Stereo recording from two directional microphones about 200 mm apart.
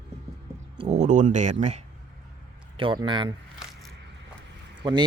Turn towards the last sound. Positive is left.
turn(degrees=-20)  # may be behind; listen again after turning